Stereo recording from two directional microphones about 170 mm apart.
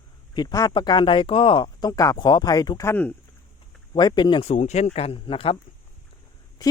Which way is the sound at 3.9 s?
25° left (ahead or behind).